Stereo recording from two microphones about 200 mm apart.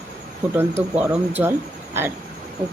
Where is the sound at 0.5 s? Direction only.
10° right (ahead or behind).